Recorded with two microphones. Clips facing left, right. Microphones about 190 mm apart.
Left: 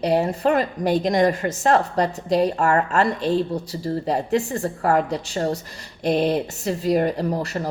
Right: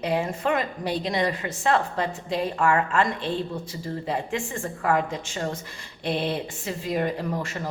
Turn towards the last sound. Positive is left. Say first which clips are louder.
# left 5 dB
turn(degrees=40)  # may be behind; listen again after turning